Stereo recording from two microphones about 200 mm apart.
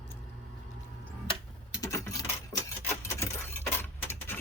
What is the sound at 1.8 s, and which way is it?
Keys jangling, 15° left (ahead or behind).